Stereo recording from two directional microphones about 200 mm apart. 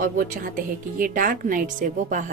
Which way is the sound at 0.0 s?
45° right (ahead or behind).